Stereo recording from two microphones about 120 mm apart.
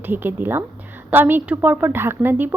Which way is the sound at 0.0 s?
15° right (ahead or behind).